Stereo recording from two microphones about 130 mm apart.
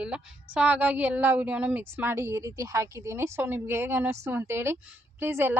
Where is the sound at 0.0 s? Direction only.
10° right (ahead or behind).